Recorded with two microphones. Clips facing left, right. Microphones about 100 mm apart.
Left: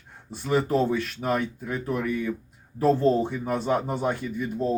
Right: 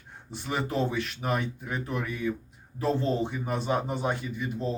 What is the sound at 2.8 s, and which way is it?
Speech, 45° left (ahead or behind).